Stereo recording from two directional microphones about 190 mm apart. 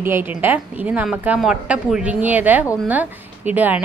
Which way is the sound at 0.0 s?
10° right (ahead or behind).